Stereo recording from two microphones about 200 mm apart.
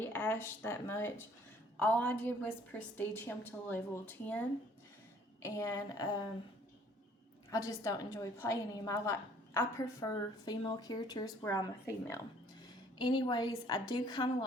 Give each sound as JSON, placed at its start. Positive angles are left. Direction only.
{"t": 0.0, "sound": "a woman's voice", "side_deg": 10}
{"t": 7.5, "sound": "a woman's voice", "side_deg": 15}